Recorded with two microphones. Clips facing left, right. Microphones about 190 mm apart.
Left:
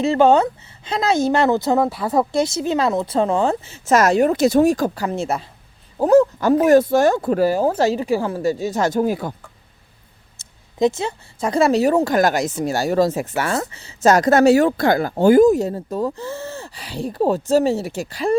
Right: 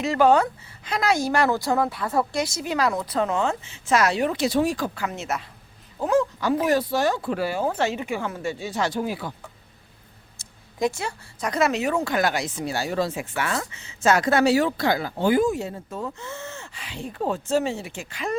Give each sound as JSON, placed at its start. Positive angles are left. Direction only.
{"t": 0.0, "sound": "a woman's voice", "side_deg": 25}
{"t": 10.3, "sound": "speech", "side_deg": 25}